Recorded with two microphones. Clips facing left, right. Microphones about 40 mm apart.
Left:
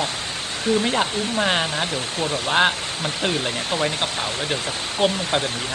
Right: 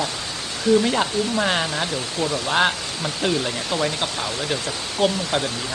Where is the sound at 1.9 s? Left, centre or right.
Left.